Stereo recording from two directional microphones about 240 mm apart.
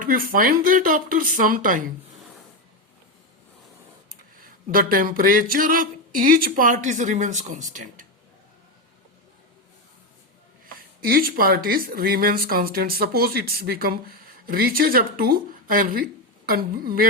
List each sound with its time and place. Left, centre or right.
0.0 s speech: right
4.4 s speech: right
11.0 s speech: right